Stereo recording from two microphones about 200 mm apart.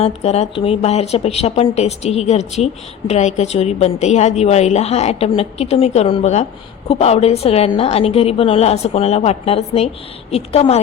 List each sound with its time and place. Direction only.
0.0 s a woman's voice: 30° left (ahead or behind)